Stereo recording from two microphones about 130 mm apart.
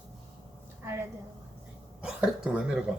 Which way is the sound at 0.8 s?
20° right (ahead or behind).